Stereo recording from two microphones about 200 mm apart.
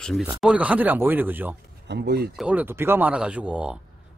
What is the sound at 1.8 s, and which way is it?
Speech, 55° right (ahead or behind).